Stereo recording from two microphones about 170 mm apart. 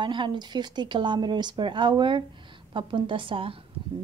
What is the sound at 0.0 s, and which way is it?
A woman's voice, 30° right (ahead or behind).